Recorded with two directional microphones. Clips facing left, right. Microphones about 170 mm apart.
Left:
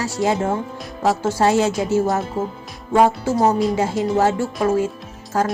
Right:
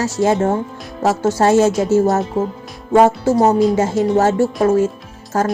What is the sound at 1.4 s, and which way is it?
Speech, 45° right (ahead or behind).